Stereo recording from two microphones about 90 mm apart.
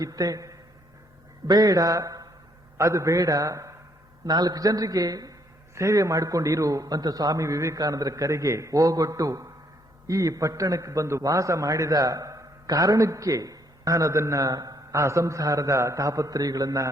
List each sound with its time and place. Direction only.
0.0 s a man's voice: 40° right (ahead or behind)